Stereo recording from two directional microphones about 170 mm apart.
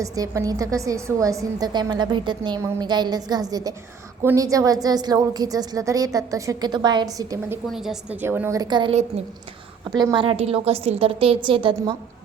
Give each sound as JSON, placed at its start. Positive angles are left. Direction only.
{"t": 0.0, "sound": "a woman's voice", "side_deg": -20}
{"t": 7.7, "sound": "a woman's voice", "side_deg": 0}
{"t": 9.2, "sound": "a woman's voice", "side_deg": -40}
{"t": 9.9, "sound": "a woman's voice", "side_deg": -25}